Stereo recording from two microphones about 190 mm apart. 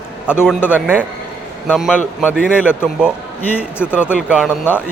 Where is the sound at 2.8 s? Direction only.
5° right (ahead or behind).